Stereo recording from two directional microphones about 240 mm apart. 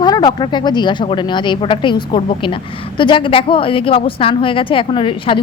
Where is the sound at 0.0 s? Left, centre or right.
Centre.